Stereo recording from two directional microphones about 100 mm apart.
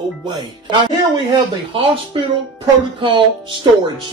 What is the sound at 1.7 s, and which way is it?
Speech, 65° right (ahead or behind).